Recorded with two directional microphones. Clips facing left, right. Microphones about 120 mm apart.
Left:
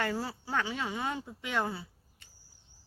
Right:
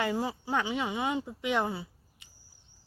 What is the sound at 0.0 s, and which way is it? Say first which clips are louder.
Speech: right 3 dB; 15° right (ahead or behind).